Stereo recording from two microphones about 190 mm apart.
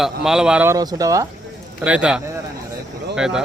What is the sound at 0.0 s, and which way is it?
Speech, 5° right (ahead or behind).